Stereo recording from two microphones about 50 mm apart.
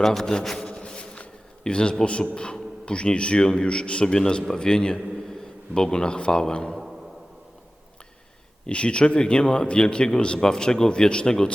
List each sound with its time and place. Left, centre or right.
0.0 s a man's voice: centre
0.7 s a sound: left
2.3 s a man's voice: centre
8.6 s a man's voice: left